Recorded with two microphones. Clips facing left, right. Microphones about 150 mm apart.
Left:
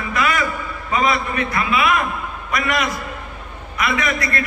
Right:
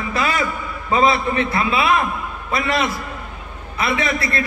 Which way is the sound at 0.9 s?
30° right (ahead or behind).